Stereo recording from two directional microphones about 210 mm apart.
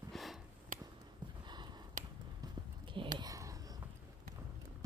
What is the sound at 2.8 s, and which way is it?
Whispering, 25° right (ahead or behind).